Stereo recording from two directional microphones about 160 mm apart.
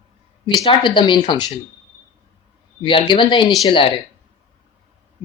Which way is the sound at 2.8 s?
30° left (ahead or behind).